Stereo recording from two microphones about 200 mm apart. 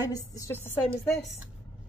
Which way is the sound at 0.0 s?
15° left (ahead or behind).